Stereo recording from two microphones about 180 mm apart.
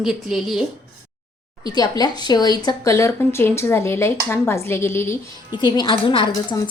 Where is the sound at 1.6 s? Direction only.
20° left (ahead or behind).